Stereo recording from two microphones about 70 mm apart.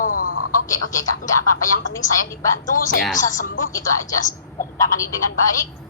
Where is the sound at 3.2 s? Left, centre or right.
Left.